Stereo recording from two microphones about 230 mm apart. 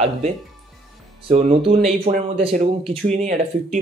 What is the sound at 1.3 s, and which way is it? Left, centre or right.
Speech, right.